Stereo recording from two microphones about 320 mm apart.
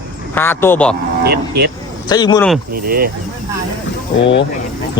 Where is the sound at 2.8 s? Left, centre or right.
Right.